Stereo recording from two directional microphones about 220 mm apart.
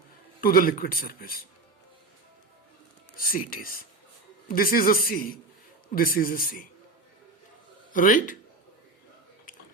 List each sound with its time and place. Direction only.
0.4 s speech: 40° left (ahead or behind)
3.2 s speech: 40° left (ahead or behind)
7.9 s speech: 35° left (ahead or behind)